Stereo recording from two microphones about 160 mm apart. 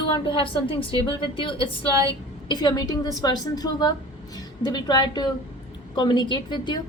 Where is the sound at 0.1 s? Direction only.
30° left (ahead or behind).